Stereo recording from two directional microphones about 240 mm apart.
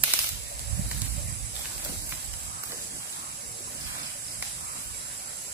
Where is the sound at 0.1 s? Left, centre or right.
Centre.